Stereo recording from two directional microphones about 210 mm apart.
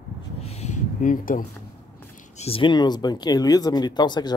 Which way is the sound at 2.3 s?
25° left (ahead or behind).